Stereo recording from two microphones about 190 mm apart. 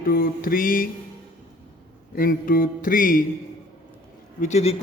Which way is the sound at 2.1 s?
50° left (ahead or behind).